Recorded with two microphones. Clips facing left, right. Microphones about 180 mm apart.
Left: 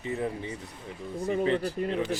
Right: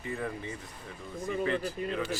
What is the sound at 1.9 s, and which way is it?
Speech, 20° left (ahead or behind).